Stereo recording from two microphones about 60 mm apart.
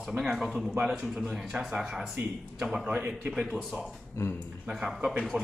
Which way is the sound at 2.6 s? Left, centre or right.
Centre.